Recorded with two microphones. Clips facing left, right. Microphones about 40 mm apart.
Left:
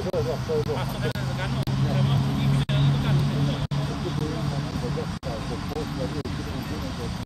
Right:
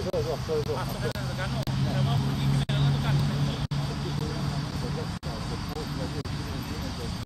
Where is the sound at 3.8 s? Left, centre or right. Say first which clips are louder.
Left 4 dB; left.